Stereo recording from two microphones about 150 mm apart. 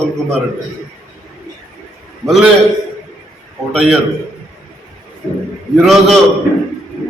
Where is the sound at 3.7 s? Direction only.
5° right (ahead or behind).